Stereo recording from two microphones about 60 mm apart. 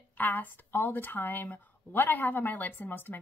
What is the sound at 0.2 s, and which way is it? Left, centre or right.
A woman's voice, left.